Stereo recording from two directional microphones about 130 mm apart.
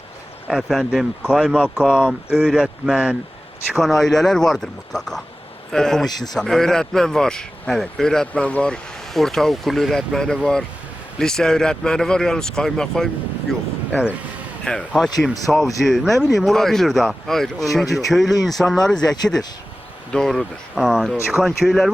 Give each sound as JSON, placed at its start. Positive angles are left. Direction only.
{"t": 0.4, "sound": "speech", "side_deg": 0}
{"t": 6.1, "sound": "a man's voice", "side_deg": 30}
{"t": 6.3, "sound": "speech", "side_deg": 0}
{"t": 14.6, "sound": "speech", "side_deg": 5}
{"t": 20.1, "sound": "speech", "side_deg": 5}